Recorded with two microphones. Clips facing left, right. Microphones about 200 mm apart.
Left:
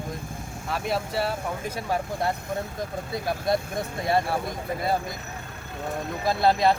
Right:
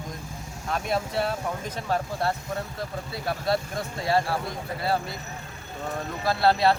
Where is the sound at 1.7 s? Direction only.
15° left (ahead or behind).